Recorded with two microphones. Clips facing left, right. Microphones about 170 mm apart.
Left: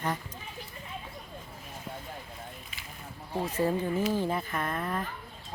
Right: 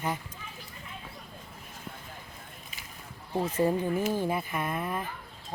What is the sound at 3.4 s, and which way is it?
Speech, 20° right (ahead or behind).